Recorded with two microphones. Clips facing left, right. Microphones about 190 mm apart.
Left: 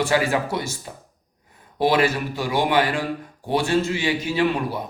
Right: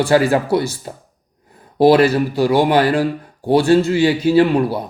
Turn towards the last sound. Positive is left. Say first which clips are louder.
# right 9 dB
turn(degrees=-35)  # may be behind; listen again after turning